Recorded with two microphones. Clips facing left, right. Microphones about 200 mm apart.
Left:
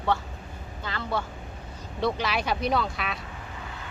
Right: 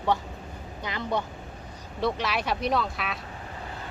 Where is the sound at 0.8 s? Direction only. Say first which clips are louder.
Right 1 dB; 15° right (ahead or behind).